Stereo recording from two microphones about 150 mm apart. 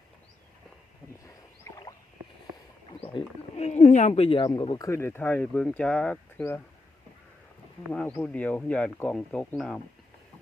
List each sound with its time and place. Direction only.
1.3 s rowboat: 20° left (ahead or behind)
3.0 s speech: 40° left (ahead or behind)
4.8 s speech: 20° left (ahead or behind)
7.9 s speech: 10° left (ahead or behind)